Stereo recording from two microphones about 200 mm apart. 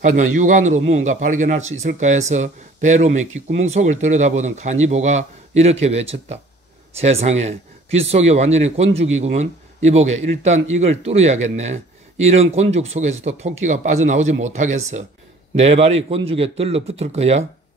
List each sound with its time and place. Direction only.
0.0 s a man's voice: 40° right (ahead or behind)